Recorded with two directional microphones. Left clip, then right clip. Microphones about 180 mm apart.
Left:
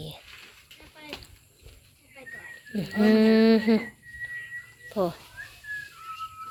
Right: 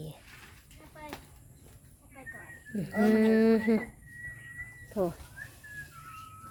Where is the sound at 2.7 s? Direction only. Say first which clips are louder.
Left 4 dB; centre (ahead or behind).